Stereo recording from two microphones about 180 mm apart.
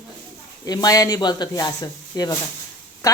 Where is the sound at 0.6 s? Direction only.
20° left (ahead or behind).